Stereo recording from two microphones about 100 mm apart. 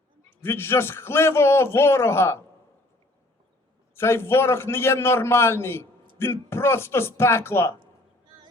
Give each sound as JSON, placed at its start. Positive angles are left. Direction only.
{"t": 0.4, "sound": "a man's voice", "side_deg": 25}
{"t": 3.9, "sound": "a man's voice", "side_deg": 25}